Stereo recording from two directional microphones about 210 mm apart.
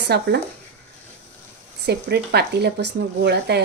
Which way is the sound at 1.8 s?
50° right (ahead or behind).